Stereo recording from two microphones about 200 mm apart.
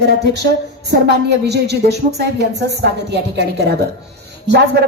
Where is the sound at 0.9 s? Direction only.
55° right (ahead or behind).